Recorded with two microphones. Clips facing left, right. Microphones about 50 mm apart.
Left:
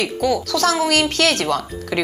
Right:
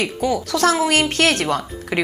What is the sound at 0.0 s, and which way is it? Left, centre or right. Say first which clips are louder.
A woman's voice: left 1 dB; right.